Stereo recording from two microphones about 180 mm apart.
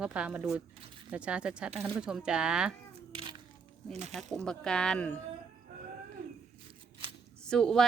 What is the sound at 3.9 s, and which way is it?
Speech, 40° right (ahead or behind).